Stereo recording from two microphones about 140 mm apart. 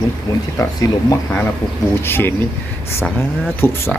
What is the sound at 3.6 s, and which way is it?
Speech, 15° left (ahead or behind).